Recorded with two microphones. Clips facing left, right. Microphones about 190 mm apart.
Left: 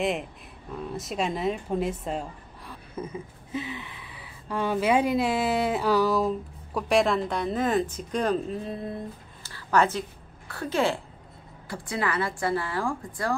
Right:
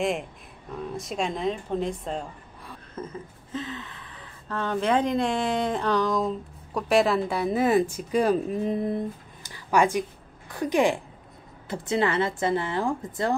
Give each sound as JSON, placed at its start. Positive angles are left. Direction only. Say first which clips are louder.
{"t": 0.0, "sound": "a woman's voice", "louder": "right 1 dB", "side_deg": 0}